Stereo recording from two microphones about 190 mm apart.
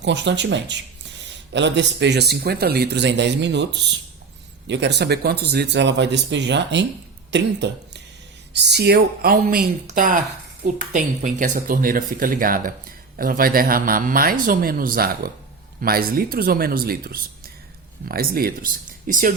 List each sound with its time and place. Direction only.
0.0 s speech: 65° right (ahead or behind); by 19.3 s 45° right (ahead or behind)